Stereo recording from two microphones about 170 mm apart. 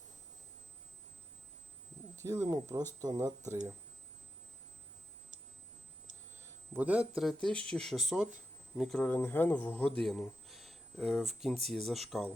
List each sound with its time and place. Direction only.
2.2 s speech: 15° right (ahead or behind)
6.7 s speech: 10° right (ahead or behind)
7.2 s a man's voice: centre (ahead or behind)